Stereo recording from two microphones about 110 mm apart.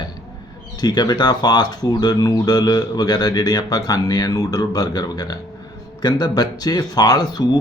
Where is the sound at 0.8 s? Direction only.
40° left (ahead or behind).